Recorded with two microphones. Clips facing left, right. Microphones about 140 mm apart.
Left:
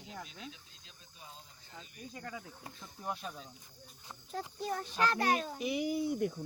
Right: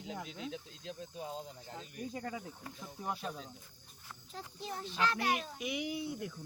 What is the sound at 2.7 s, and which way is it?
Speech, 5° right (ahead or behind).